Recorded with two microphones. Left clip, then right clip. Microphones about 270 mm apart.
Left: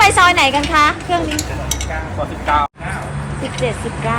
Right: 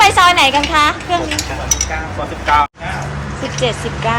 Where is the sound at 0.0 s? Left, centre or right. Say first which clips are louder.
Right 1 dB; centre.